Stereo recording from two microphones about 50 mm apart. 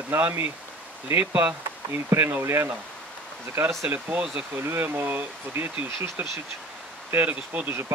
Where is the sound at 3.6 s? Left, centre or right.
Right.